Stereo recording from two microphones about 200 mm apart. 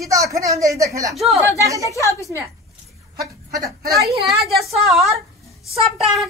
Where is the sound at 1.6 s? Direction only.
15° right (ahead or behind).